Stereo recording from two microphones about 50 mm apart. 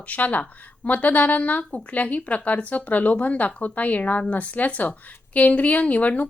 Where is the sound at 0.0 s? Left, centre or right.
Left.